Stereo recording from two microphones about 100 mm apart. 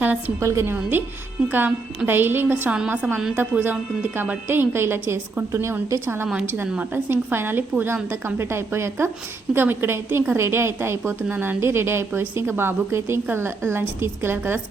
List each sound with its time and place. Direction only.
0.3 s a woman's voice: 30° right (ahead or behind)